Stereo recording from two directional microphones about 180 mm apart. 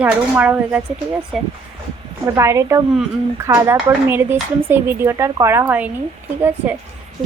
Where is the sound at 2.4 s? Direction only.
15° right (ahead or behind).